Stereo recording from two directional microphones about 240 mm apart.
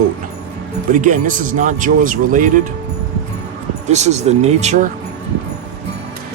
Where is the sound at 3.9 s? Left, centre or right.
Right.